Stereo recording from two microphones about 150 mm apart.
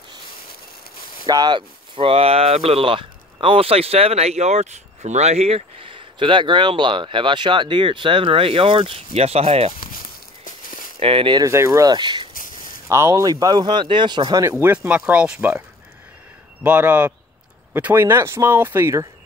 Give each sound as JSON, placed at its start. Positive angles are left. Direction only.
{"t": 1.2, "sound": "speech", "side_deg": -30}
{"t": 10.4, "sound": "a sound", "side_deg": 65}
{"t": 11.0, "sound": "speech", "side_deg": -35}
{"t": 11.5, "sound": "speech", "side_deg": -20}
{"t": 12.4, "sound": "a sound", "side_deg": 65}
{"t": 12.8, "sound": "speech", "side_deg": -20}
{"t": 14.4, "sound": "speech", "side_deg": -15}
{"t": 16.6, "sound": "speech", "side_deg": -10}